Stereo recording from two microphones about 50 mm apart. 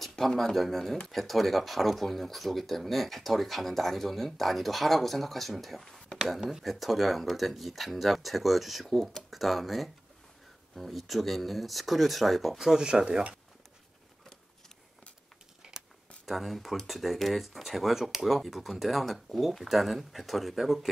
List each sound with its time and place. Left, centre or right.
0.0 s speech: centre
12.5 s speech: centre
16.3 s speech: centre